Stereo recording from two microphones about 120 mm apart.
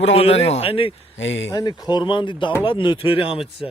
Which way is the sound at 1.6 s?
35° left (ahead or behind).